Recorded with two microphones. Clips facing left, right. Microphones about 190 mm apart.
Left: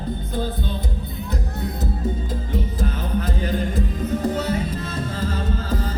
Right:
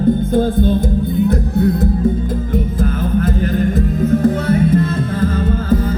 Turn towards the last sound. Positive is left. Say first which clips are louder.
# right 11 dB
turn(degrees=-55)  # may be behind; listen again after turning